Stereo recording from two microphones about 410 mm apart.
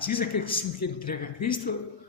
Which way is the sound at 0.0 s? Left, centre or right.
Centre.